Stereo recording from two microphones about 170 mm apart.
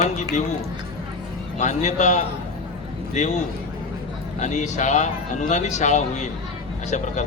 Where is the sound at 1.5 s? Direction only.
45° left (ahead or behind).